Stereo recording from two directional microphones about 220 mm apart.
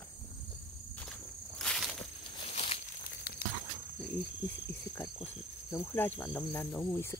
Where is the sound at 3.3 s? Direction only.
45° left (ahead or behind).